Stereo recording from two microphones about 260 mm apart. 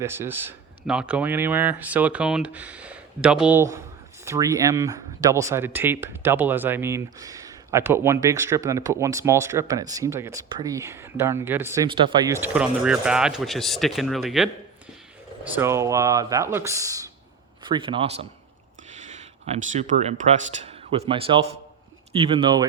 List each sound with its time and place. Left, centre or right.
0.0 s speech: centre
15.5 s a man's voice: centre